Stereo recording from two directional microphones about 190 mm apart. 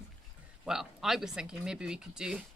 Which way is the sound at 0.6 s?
Centre (ahead or behind).